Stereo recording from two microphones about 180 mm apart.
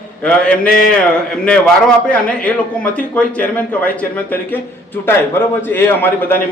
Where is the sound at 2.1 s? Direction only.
5° left (ahead or behind).